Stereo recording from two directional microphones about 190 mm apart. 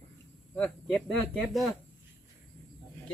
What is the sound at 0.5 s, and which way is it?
Speech, 5° left (ahead or behind).